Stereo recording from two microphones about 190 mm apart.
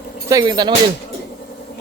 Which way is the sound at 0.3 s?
20° right (ahead or behind).